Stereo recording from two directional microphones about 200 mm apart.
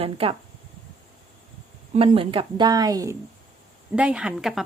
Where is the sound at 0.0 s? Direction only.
30° right (ahead or behind).